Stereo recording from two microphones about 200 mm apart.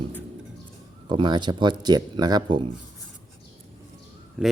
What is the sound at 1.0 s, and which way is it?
Speech, 25° right (ahead or behind).